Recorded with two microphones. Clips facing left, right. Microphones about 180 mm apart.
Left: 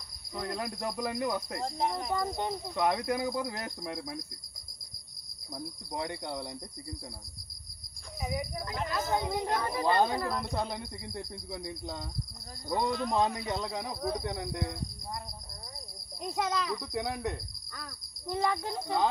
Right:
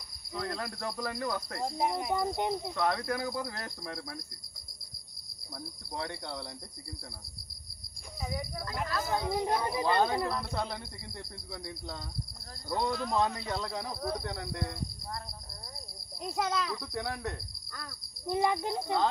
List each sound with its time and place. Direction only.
0.3 s speech: 15° left (ahead or behind)
1.6 s speech: 10° right (ahead or behind)
2.7 s speech: 15° left (ahead or behind)
5.9 s speech: 15° left (ahead or behind)
8.2 s speech: 15° left (ahead or behind)
9.4 s speech: 15° right (ahead or behind)
9.8 s speech: 20° left (ahead or behind)
16.2 s speech: centre (ahead or behind)
16.8 s speech: 15° left (ahead or behind)
17.7 s speech: 10° right (ahead or behind)